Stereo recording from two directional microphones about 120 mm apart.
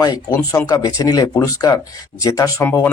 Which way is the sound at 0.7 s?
35° left (ahead or behind).